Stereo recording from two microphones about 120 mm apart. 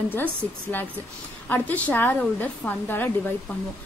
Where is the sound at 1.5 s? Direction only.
15° left (ahead or behind).